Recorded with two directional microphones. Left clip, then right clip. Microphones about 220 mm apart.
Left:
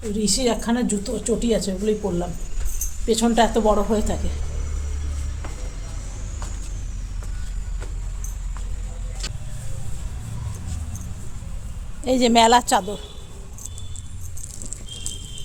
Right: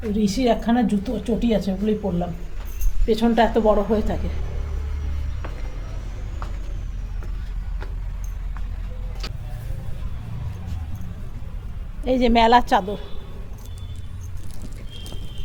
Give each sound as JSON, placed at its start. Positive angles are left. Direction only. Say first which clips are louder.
{"t": 0.2, "sound": "a woman's voice", "louder": "right 1 dB", "side_deg": 10}
{"t": 12.0, "sound": "a woman's voice", "louder": "left 1 dB", "side_deg": 20}